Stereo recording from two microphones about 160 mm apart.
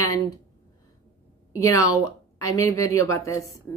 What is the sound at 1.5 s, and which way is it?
A woman's voice, 20° left (ahead or behind).